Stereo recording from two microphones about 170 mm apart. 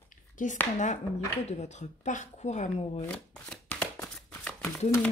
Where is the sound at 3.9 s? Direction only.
15° left (ahead or behind).